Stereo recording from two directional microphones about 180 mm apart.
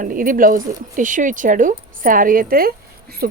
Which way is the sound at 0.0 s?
50° right (ahead or behind).